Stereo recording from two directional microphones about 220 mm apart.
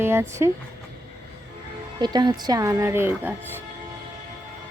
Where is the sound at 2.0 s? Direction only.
20° right (ahead or behind).